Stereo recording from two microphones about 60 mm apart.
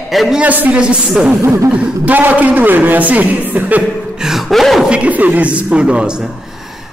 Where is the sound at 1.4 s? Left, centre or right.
Right.